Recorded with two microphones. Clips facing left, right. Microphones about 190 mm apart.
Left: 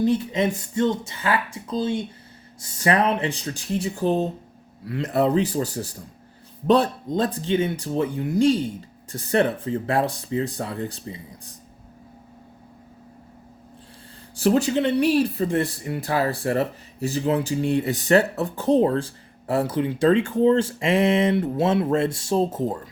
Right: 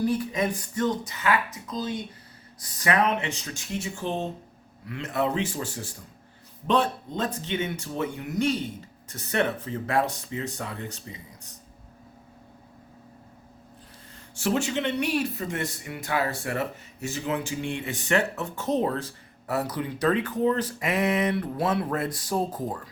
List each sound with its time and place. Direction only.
0.0 s speech: 25° left (ahead or behind)
14.3 s speech: 35° left (ahead or behind)